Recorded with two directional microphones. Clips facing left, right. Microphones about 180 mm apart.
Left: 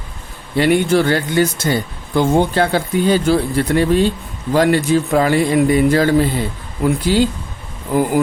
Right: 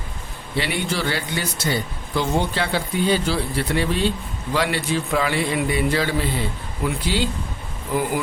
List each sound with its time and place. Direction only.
0.5 s speech: 50° left (ahead or behind)